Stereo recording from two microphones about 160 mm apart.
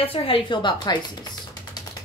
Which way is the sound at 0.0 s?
35° left (ahead or behind).